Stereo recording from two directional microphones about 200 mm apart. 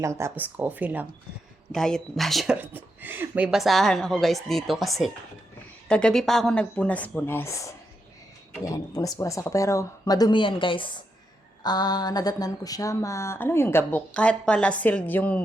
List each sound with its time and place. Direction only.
0.0 s speech: 15° right (ahead or behind)
1.7 s speech: centre (ahead or behind)